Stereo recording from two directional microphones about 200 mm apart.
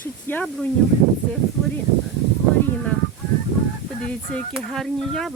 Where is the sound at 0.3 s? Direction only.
5° left (ahead or behind).